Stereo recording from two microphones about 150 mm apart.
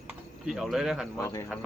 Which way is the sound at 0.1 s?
Centre (ahead or behind).